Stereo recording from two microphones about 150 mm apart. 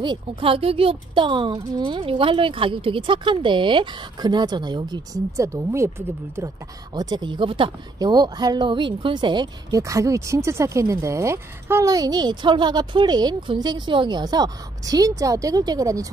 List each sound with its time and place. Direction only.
0.0 s speech: 35° right (ahead or behind)